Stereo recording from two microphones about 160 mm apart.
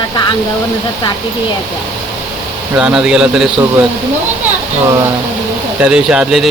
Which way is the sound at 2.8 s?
5° right (ahead or behind).